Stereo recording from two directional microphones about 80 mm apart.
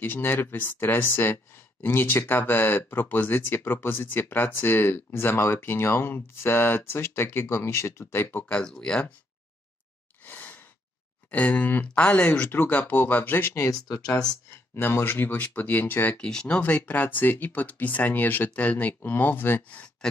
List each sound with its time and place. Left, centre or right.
0.0 s speech: left
8.6 s speech: centre
10.2 s sigh: left
11.2 s speech: centre
13.7 s speech: left
14.8 s speech: left
16.2 s speech: centre